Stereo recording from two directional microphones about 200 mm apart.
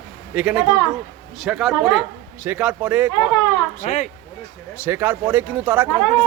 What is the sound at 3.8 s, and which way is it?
Speech, 35° left (ahead or behind).